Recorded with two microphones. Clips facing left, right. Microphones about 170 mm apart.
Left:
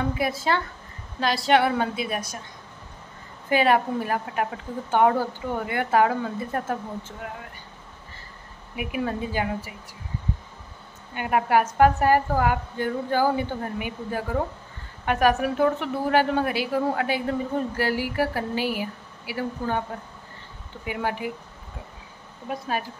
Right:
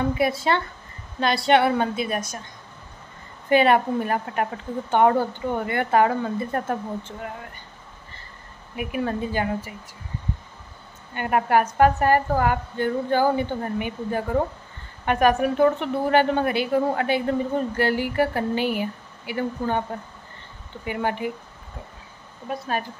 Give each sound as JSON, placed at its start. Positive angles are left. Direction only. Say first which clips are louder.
{"t": 0.1, "sound": "a woman's voice", "louder": "right 3 dB", "side_deg": 0}
{"t": 3.4, "sound": "a woman's voice", "louder": "right 3 dB", "side_deg": 0}
{"t": 8.7, "sound": "a woman's voice", "louder": "right 2 dB", "side_deg": 5}
{"t": 11.1, "sound": "a woman's voice", "louder": "right 1 dB", "side_deg": 5}
{"t": 22.5, "sound": "a woman's voice", "louder": "right 1 dB", "side_deg": 10}